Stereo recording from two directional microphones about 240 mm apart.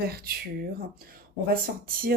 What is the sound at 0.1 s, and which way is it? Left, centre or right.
A woman's voice, right.